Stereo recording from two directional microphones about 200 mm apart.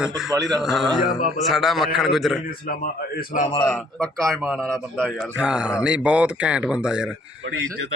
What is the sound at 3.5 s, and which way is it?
A man's voice, 10° left (ahead or behind).